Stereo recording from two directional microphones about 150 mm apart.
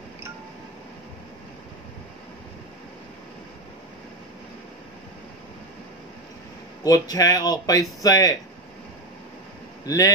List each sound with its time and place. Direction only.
6.8 s speech: 25° left (ahead or behind)
9.8 s speech: 20° left (ahead or behind)